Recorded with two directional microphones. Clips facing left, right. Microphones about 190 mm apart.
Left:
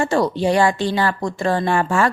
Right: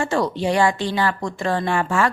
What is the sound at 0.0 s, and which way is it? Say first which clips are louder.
A woman's voice: left 3 dB; 35° left (ahead or behind).